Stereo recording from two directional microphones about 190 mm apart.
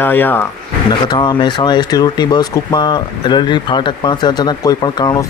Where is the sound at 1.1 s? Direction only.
25° left (ahead or behind).